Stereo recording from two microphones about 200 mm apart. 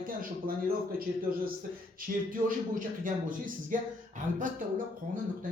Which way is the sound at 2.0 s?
40° right (ahead or behind).